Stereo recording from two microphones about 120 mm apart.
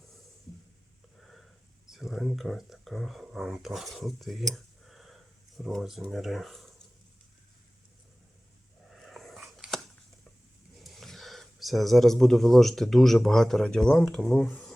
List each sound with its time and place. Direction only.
1.2 s sniff: centre (ahead or behind)
1.9 s speech: centre (ahead or behind)
8.9 s dog: centre (ahead or behind)
10.8 s speech: centre (ahead or behind)